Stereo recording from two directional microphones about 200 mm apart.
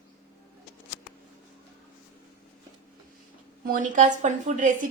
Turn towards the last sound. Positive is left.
turn(degrees=-40)  # may be behind; listen again after turning